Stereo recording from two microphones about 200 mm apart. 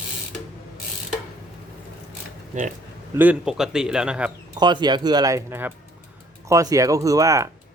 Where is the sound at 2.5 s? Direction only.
35° right (ahead or behind).